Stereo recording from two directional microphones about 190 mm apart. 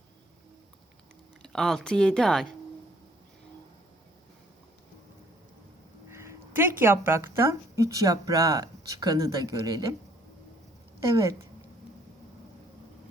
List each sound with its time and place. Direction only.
1.4 s speech: 5° left (ahead or behind)
6.1 s a woman's voice: 15° right (ahead or behind)
11.0 s speech: 15° right (ahead or behind)